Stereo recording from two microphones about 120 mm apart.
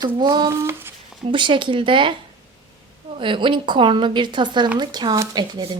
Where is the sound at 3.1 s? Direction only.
45° right (ahead or behind).